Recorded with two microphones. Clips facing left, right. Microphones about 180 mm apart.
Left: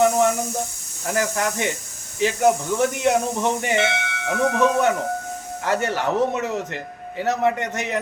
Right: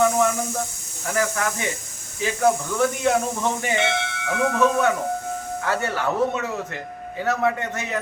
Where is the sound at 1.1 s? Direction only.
25° left (ahead or behind).